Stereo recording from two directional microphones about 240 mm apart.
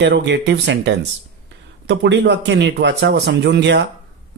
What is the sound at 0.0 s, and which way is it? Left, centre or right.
Speech, right.